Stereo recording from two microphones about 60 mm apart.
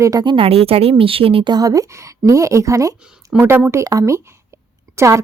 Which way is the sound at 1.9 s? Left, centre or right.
Right.